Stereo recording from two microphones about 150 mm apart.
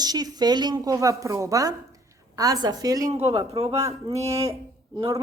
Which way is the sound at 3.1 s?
45° right (ahead or behind).